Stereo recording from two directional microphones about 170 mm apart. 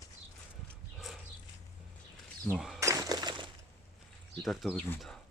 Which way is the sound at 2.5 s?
5° right (ahead or behind).